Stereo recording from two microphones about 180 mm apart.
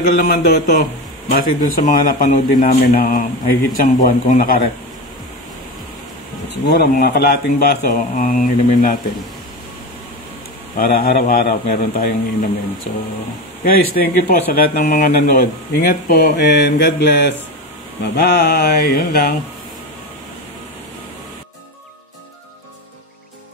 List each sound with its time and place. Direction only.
0.0 s a man's voice: 55° left (ahead or behind)
6.7 s a man's voice: 60° left (ahead or behind)
10.8 s a man's voice: 55° left (ahead or behind)